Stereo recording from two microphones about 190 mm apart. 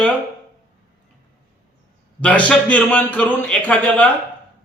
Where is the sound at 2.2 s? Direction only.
5° left (ahead or behind).